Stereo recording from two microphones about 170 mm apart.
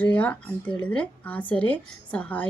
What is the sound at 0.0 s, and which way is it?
Speech, 10° left (ahead or behind).